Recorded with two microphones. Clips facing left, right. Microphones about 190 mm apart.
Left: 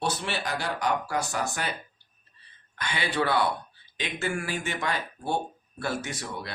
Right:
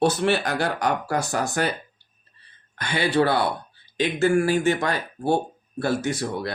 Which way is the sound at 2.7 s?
40° right (ahead or behind).